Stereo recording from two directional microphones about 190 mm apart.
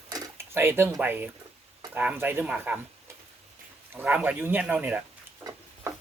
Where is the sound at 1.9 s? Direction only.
10° right (ahead or behind).